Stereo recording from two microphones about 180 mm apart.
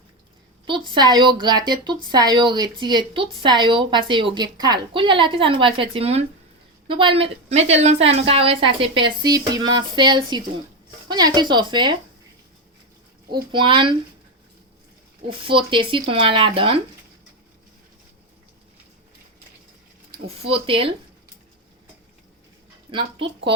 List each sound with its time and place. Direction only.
0.6 s a woman's voice: 25° right (ahead or behind)
13.3 s a woman's voice: 25° right (ahead or behind)
15.3 s a woman's voice: 30° right (ahead or behind)
20.1 s speech: 35° right (ahead or behind)
22.9 s a woman's voice: 25° right (ahead or behind)